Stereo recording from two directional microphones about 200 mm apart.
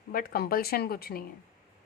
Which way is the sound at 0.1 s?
45° left (ahead or behind).